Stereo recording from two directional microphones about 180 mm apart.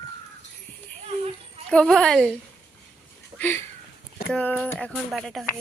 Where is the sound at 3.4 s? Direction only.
15° left (ahead or behind).